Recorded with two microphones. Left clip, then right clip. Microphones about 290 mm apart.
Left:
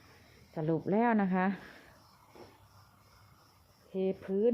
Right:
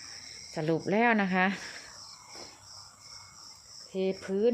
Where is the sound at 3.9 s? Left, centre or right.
Centre.